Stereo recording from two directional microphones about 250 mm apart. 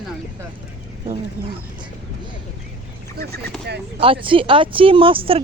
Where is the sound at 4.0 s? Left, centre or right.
Right.